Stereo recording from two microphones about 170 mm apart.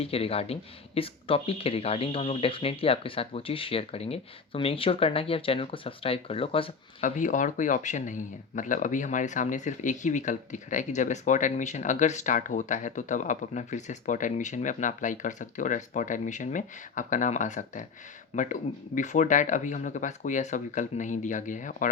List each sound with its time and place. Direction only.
0.0 s speech: 35° left (ahead or behind)
7.0 s speech: 50° left (ahead or behind)